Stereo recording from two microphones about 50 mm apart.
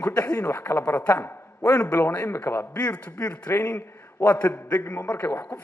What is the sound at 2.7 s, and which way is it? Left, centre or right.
Speech, left.